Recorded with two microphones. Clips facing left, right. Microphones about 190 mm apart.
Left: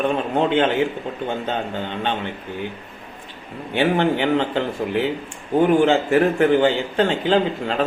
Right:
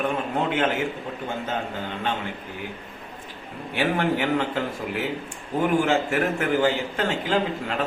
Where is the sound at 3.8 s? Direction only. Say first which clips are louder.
Left 5 dB; 30° left (ahead or behind).